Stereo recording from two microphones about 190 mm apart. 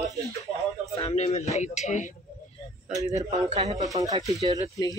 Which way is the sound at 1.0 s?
35° left (ahead or behind).